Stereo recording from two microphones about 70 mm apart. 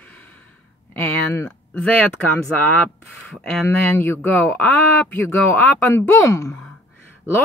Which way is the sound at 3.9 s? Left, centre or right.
Left.